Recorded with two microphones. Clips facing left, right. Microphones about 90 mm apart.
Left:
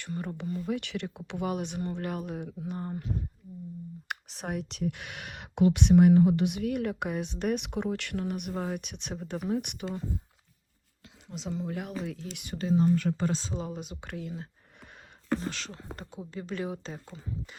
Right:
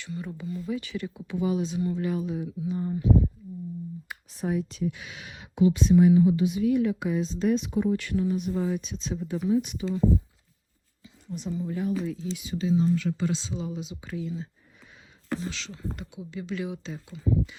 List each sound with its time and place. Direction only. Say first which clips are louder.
0.0 s speech: even; 50° left (ahead or behind)
0.6 s speech: right 2 dB; 70° left (ahead or behind); by 3.1 s 55° left (ahead or behind)
4.1 s speech: right 5 dB; 70° left (ahead or behind)
11.3 s speech: right 3 dB; 90° left
12.0 s speech: right 6 dB; 65° left (ahead or behind)
15.3 s speech: left 1 dB; 45° left (ahead or behind)